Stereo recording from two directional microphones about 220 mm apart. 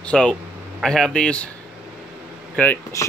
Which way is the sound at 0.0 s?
5° left (ahead or behind).